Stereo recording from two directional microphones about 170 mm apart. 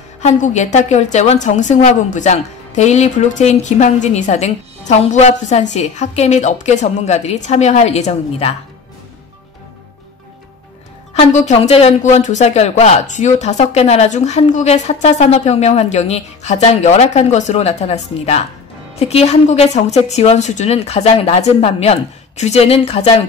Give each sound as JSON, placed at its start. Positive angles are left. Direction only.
{"t": 0.2, "sound": "a woman's voice", "side_deg": 45}
{"t": 11.1, "sound": "speech", "side_deg": 40}